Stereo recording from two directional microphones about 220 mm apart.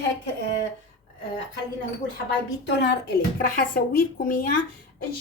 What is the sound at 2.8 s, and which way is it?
A woman's voice, 50° left (ahead or behind).